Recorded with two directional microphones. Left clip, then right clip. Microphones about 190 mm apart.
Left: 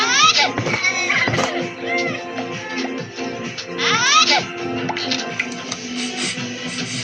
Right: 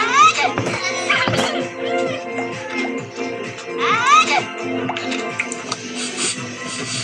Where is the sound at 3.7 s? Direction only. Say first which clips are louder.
Right 1 dB; 15° left (ahead or behind).